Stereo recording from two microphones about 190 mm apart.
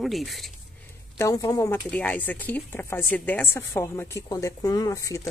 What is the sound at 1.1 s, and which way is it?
A woman's voice, 15° left (ahead or behind).